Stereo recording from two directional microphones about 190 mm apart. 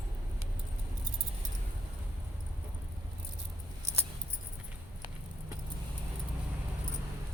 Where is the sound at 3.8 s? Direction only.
35° right (ahead or behind).